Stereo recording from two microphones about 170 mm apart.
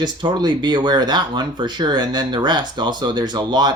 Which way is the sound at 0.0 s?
25° right (ahead or behind).